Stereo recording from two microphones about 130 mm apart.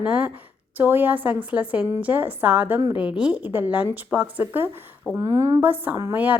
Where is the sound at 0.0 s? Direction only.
10° right (ahead or behind).